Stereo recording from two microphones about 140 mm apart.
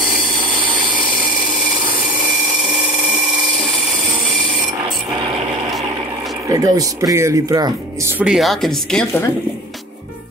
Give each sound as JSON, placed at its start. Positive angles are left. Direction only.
{"t": 6.5, "sound": "speech", "side_deg": -25}
{"t": 8.2, "sound": "a woman's voice", "side_deg": 0}